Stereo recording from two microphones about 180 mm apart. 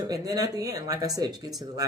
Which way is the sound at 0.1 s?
20° right (ahead or behind).